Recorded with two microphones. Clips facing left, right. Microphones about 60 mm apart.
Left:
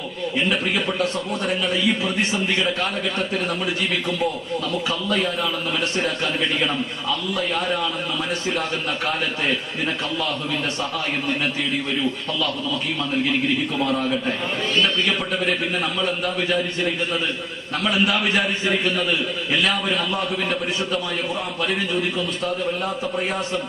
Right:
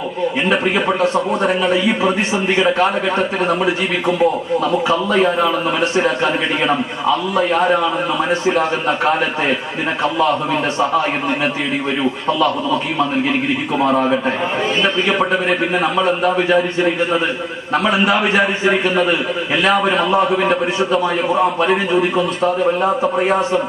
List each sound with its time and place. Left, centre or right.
0.5 s a man's voice: right
12.4 s a man's voice: right